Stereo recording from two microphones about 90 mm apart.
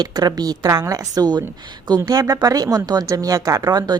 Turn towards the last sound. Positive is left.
turn(degrees=-50)  # may be behind; listen again after turning